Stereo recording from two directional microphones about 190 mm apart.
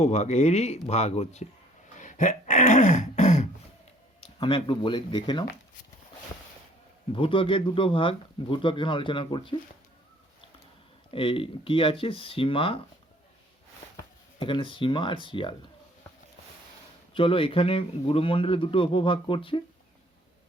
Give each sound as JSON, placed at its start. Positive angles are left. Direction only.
{"t": 0.0, "sound": "speech", "side_deg": 35}
{"t": 2.0, "sound": "a sound", "side_deg": 40}
{"t": 4.4, "sound": "speech", "side_deg": 25}
{"t": 7.1, "sound": "speech", "side_deg": 25}
{"t": 11.1, "sound": "speech", "side_deg": 30}
{"t": 14.3, "sound": "speech", "side_deg": 25}
{"t": 17.2, "sound": "speech", "side_deg": 25}